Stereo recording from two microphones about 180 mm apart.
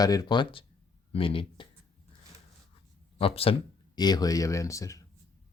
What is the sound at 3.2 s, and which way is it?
Speech, 30° left (ahead or behind).